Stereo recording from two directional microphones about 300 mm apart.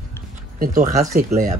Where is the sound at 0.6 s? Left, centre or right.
Right.